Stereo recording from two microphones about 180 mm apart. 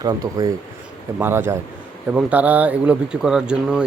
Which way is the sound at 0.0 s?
20° right (ahead or behind).